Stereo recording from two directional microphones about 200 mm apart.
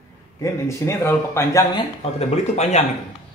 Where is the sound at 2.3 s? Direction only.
35° left (ahead or behind).